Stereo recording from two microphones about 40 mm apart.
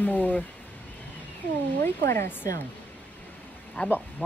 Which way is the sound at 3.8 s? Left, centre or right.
Left.